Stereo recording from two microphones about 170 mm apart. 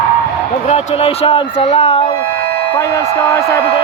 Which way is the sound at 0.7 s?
35° left (ahead or behind).